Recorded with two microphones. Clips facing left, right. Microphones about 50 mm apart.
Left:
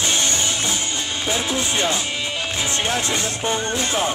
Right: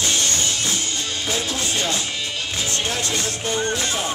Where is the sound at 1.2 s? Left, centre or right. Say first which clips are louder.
Left 3 dB; left.